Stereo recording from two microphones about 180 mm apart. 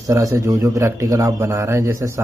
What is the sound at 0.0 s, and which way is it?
Speech, 20° right (ahead or behind).